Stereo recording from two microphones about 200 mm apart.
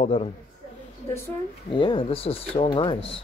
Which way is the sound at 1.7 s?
25° left (ahead or behind).